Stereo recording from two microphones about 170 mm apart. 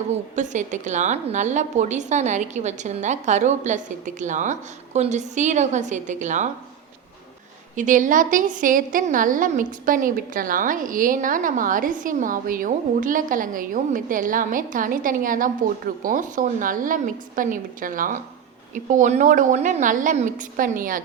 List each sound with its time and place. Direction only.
0.1 s a woman's voice: 45° right (ahead or behind)
7.8 s a woman's voice: 50° right (ahead or behind)